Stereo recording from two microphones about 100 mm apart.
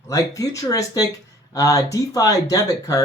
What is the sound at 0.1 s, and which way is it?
Speech, 35° left (ahead or behind).